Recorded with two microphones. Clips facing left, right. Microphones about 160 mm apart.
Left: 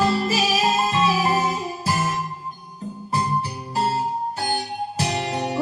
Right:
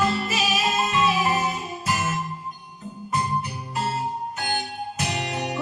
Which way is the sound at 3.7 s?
30° left (ahead or behind).